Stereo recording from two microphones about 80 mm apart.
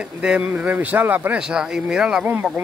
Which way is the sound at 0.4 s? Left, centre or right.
Right.